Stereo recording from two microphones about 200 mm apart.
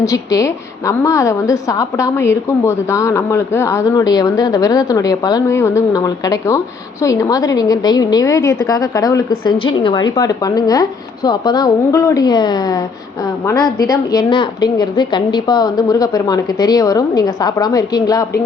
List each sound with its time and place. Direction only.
0.0 s a woman's voice: 15° left (ahead or behind)